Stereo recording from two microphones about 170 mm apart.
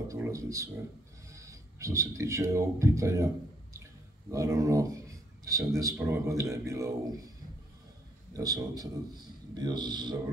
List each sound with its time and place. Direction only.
0.1 s speech: 20° right (ahead or behind)
4.3 s speech: 20° right (ahead or behind)
8.3 s speech: 20° right (ahead or behind)